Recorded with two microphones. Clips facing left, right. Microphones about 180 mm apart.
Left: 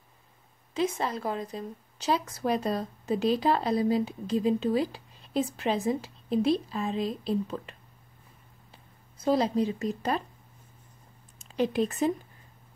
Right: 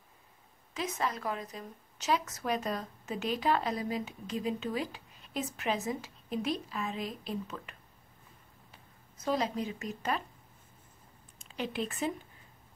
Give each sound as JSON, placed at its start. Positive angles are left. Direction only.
{"t": 0.7, "sound": "a woman's voice", "side_deg": 30}
{"t": 8.7, "sound": "speech", "side_deg": 30}
{"t": 11.4, "sound": "speech", "side_deg": 40}